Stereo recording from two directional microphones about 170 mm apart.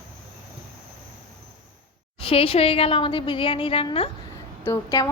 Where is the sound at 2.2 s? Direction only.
35° left (ahead or behind).